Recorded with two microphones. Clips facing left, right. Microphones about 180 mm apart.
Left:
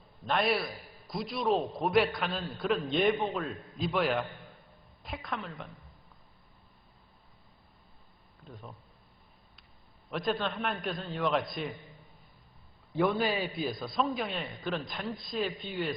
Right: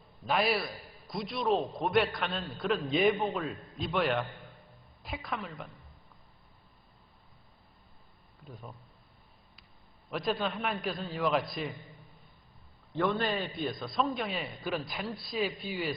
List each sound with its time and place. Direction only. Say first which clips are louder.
0.3 s a man's voice: even; centre (ahead or behind)
10.1 s a man's voice: even; centre (ahead or behind)
12.9 s a man's voice: left 2 dB; 10° left (ahead or behind)